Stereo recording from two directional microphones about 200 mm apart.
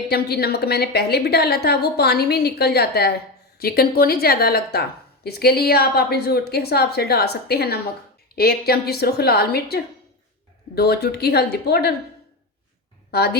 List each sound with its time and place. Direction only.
0.1 s a woman's voice: 50° left (ahead or behind)
13.1 s a woman's voice: 50° left (ahead or behind)